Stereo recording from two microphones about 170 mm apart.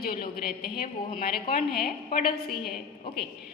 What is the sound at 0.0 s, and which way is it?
A woman's voice, 60° left (ahead or behind).